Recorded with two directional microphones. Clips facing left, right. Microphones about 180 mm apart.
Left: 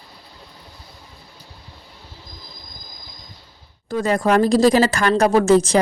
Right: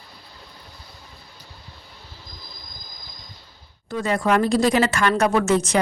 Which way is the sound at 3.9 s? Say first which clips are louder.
Left 3 dB; 40° left (ahead or behind).